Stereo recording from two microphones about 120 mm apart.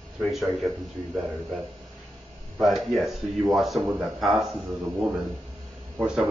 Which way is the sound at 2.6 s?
Centre (ahead or behind).